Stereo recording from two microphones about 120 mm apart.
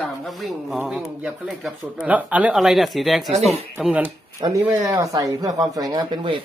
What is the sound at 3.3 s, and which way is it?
Speech, 70° right (ahead or behind).